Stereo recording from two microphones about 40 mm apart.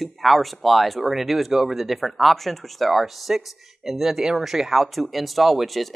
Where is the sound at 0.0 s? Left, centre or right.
Centre.